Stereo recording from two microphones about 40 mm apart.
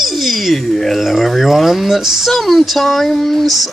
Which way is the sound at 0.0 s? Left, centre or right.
Centre.